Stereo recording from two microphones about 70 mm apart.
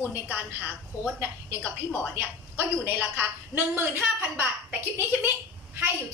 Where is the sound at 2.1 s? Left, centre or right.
Right.